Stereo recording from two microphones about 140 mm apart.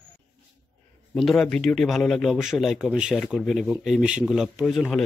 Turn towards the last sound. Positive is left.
turn(degrees=0)  # may be behind; listen again after turning